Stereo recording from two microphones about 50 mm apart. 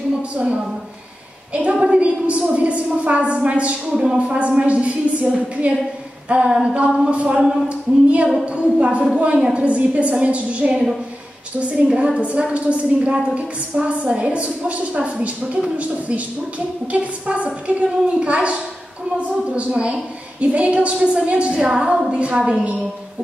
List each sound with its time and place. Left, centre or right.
1.5 s a woman's voice: right
3.9 s speech: centre
4.4 s a woman's voice: right
6.2 s a sound: right
6.5 s a woman's voice: right